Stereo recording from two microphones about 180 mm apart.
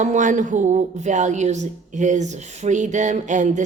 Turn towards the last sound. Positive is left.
turn(degrees=-45)  # may be behind; listen again after turning